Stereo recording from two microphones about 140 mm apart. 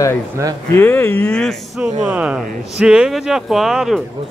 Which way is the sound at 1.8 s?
5° right (ahead or behind).